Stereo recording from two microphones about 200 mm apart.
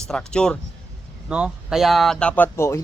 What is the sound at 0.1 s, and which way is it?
A man's voice, 5° left (ahead or behind).